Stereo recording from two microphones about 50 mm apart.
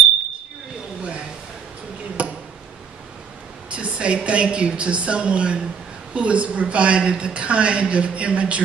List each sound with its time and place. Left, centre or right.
3.7 s a woman's voice: right